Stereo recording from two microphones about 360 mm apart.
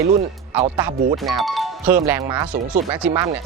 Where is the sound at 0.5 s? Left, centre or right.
Centre.